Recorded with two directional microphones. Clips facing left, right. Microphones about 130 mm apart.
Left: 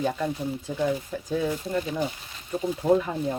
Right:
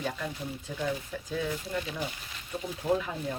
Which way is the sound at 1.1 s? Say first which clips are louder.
Left 6 dB; 35° left (ahead or behind).